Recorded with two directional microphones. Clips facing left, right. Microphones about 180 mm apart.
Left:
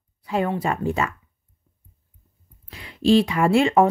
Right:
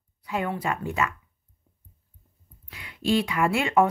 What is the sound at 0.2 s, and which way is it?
Speech, 30° left (ahead or behind).